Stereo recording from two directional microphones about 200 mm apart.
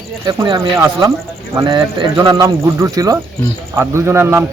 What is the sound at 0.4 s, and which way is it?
Speech, 30° right (ahead or behind).